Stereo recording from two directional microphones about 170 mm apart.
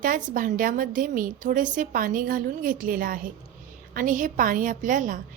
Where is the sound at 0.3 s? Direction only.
50° right (ahead or behind).